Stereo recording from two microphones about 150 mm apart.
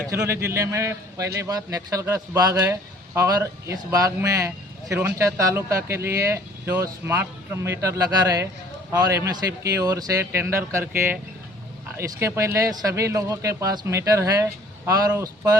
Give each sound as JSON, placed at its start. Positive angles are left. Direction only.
{"t": 0.1, "sound": "speech", "side_deg": -15}